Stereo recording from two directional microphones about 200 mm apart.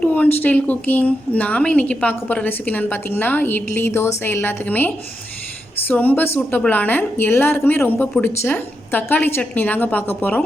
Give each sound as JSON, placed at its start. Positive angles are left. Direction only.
{"t": 0.0, "sound": "a woman's voice", "side_deg": 10}